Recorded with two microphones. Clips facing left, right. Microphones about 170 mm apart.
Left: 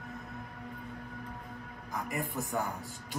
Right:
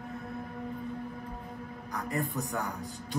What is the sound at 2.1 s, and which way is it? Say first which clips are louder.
Speech: right 5 dB; 20° left (ahead or behind).